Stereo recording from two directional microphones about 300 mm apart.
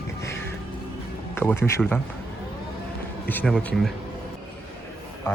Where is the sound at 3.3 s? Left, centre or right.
Centre.